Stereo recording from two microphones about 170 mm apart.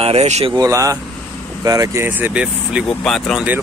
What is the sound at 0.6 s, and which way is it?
Speech, 20° right (ahead or behind).